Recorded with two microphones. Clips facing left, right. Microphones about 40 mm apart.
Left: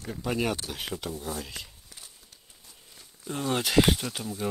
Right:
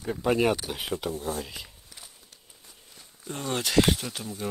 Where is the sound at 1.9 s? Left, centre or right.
Centre.